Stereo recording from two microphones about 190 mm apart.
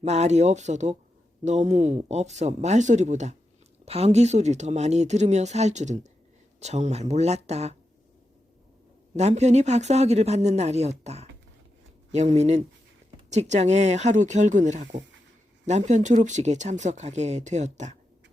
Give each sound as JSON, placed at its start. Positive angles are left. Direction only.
{"t": 0.0, "sound": "speech", "side_deg": -35}
{"t": 9.1, "sound": "speech", "side_deg": -35}